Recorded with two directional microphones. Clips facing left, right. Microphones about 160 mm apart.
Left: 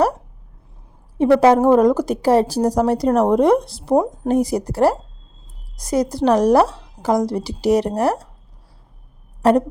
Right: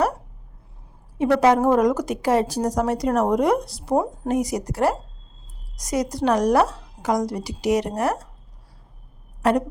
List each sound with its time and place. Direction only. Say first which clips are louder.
1.4 s speech: left 3 dB; 30° left (ahead or behind)
3.9 s a woman's voice: left 5 dB; 15° left (ahead or behind)
4.3 s a woman's voice: left 5 dB; 30° left (ahead or behind)
9.4 s speech: left 5 dB; 30° left (ahead or behind)